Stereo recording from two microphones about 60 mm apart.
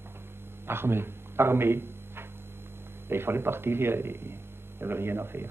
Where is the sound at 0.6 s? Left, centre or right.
Right.